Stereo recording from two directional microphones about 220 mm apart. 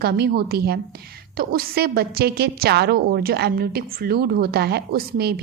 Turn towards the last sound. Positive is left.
turn(degrees=-45)  # may be behind; listen again after turning